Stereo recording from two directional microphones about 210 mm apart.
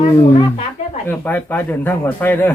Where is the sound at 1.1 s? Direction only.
10° left (ahead or behind).